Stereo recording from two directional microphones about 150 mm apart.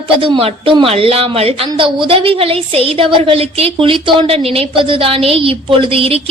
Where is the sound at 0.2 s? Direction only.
35° right (ahead or behind).